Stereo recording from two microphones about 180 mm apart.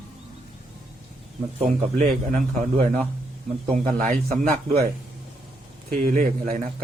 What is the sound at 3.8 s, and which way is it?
Speech, 45° right (ahead or behind).